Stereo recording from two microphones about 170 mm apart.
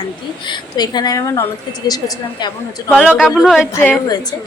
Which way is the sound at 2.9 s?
5° right (ahead or behind).